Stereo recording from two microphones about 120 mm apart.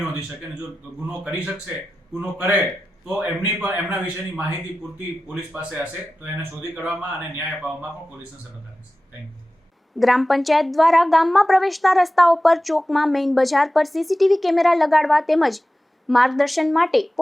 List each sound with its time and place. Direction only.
1.3 s a man's voice: 15° right (ahead or behind)
10.0 s speech: centre (ahead or behind)